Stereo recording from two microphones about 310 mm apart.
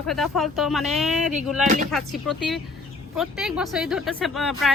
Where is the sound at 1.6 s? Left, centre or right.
Right.